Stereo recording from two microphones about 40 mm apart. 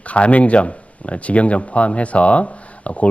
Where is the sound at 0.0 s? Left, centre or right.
Left.